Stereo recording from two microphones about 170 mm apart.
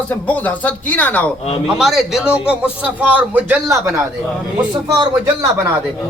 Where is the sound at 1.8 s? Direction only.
Centre (ahead or behind).